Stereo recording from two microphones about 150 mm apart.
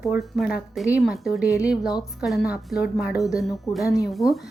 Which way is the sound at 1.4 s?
20° left (ahead or behind).